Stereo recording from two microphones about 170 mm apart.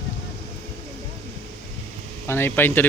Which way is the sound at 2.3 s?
10° left (ahead or behind).